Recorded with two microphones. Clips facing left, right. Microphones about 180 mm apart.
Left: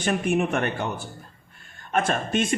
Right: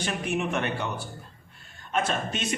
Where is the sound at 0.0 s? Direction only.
50° left (ahead or behind).